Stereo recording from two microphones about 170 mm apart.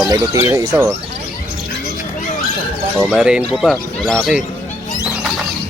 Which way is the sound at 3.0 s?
5° right (ahead or behind).